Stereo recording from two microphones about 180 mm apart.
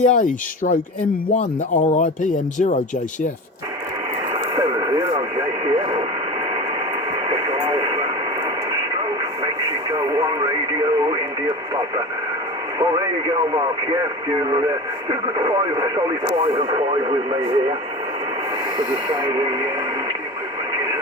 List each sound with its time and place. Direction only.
0.0 s speech: 45° left (ahead or behind)
4.5 s radio: 25° right (ahead or behind)
7.3 s radio: 25° right (ahead or behind)
9.9 s radio: 20° right (ahead or behind)
13.4 s speech: 25° right (ahead or behind)
15.1 s speech: 25° right (ahead or behind)
18.8 s speech: 25° right (ahead or behind)